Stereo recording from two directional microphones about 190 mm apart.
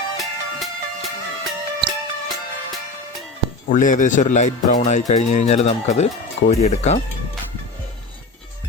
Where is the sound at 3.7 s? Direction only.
45° left (ahead or behind).